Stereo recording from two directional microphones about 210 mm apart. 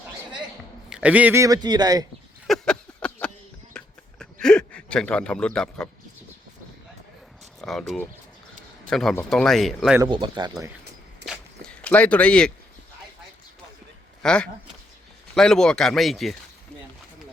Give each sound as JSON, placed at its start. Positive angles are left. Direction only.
{"t": 0.9, "sound": "speech", "side_deg": -5}
{"t": 2.5, "sound": "a sound", "side_deg": 5}
{"t": 7.6, "sound": "speech", "side_deg": 0}
{"t": 10.0, "sound": "speech", "side_deg": -20}
{"t": 11.3, "sound": "a sound", "side_deg": 5}
{"t": 14.2, "sound": "speech", "side_deg": 5}